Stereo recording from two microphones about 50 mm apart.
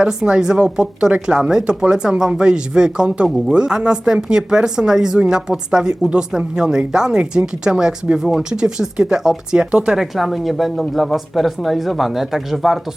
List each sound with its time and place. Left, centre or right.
0.0 s speech: centre